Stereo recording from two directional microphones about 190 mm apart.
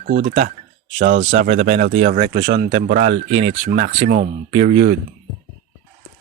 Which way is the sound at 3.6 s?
75° right (ahead or behind).